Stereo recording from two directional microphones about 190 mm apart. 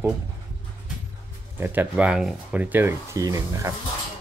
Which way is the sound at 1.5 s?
10° right (ahead or behind).